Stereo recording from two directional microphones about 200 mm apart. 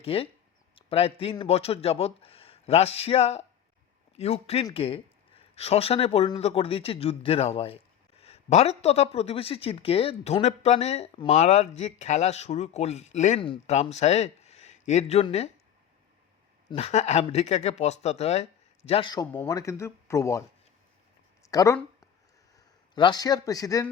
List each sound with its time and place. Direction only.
0.0 s a man's voice: 30° left (ahead or behind)
16.6 s speech: 30° left (ahead or behind); by 20.4 s 15° left (ahead or behind)
21.4 s a man's voice: 15° left (ahead or behind)